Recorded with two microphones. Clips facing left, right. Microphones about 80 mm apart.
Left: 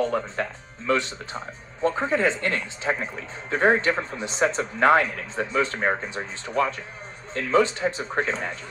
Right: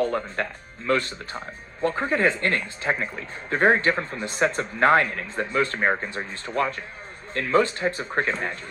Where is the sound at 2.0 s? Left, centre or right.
Right.